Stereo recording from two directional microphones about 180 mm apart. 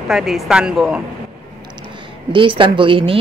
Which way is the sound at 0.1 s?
Centre (ahead or behind).